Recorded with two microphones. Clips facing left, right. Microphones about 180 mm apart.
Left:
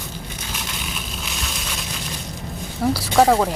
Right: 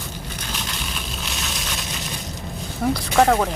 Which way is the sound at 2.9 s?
5° left (ahead or behind).